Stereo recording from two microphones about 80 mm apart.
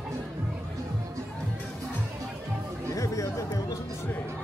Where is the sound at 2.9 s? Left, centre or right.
Left.